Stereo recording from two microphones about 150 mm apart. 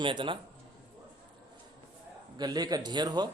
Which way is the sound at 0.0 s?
35° right (ahead or behind).